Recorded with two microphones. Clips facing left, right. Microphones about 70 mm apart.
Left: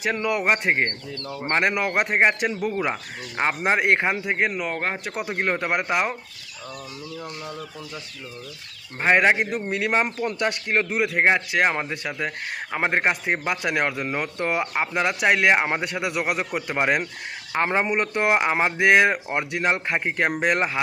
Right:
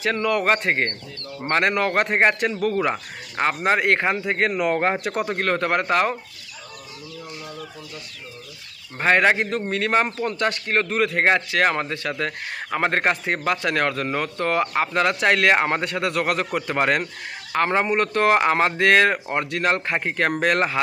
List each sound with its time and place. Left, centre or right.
0.0 s a man's voice: centre
4.5 s speech: centre
5.4 s a man's voice: centre
9.0 s a man's voice: centre